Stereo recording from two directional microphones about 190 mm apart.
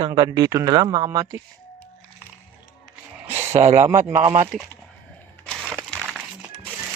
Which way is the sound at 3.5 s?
30° right (ahead or behind).